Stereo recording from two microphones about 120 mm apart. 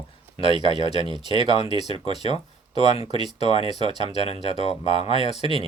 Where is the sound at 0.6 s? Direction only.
40° right (ahead or behind).